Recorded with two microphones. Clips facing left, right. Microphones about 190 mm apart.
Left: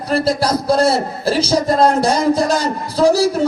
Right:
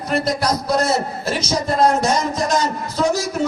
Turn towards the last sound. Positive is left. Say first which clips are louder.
# left 7 dB
turn(degrees=35)  # may be behind; listen again after turning